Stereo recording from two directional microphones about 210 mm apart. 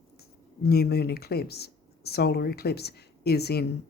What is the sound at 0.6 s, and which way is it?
Speech, 50° left (ahead or behind).